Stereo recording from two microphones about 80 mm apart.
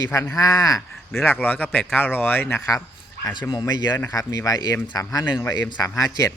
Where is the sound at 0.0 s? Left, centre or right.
Left.